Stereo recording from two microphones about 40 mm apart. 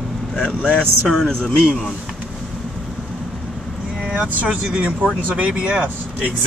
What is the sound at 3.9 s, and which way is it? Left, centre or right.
Vehicle, right.